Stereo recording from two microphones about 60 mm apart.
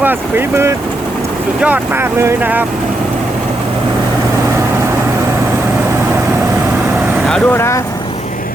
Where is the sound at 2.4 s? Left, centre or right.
Right.